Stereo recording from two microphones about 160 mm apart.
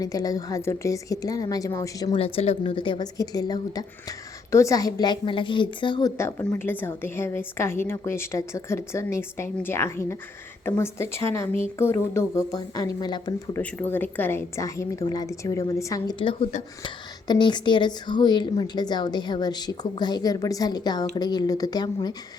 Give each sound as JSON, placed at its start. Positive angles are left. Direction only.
{"t": 0.0, "sound": "a woman's voice", "side_deg": 20}
{"t": 2.1, "sound": "a woman's voice", "side_deg": 35}
{"t": 13.5, "sound": "a woman's voice", "side_deg": 10}
{"t": 16.1, "sound": "a woman's voice", "side_deg": 35}